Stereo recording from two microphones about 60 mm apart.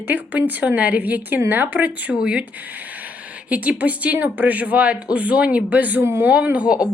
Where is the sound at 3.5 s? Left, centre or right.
Right.